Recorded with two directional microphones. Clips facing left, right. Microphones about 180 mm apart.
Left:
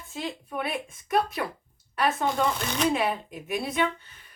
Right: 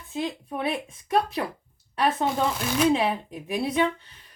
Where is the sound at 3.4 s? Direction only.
30° right (ahead or behind).